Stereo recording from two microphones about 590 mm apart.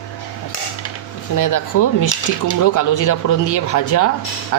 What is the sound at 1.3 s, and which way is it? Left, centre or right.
Speech, left.